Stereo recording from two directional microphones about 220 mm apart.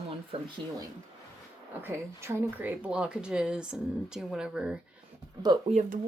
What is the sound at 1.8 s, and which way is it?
Speech, 10° right (ahead or behind).